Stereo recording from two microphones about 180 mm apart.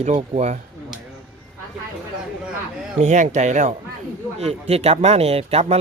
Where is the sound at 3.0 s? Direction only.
40° right (ahead or behind).